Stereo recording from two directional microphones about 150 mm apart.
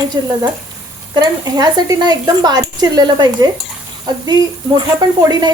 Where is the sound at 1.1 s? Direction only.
25° right (ahead or behind).